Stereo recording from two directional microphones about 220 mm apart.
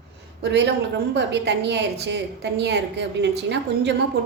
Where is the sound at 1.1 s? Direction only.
50° right (ahead or behind).